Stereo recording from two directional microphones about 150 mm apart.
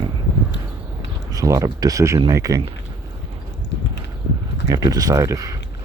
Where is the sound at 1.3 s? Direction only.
20° right (ahead or behind).